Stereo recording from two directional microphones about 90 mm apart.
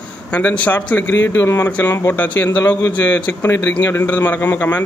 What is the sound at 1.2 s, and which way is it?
A man's voice, 25° left (ahead or behind).